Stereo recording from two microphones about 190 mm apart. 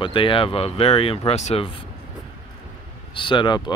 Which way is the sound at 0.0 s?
25° left (ahead or behind).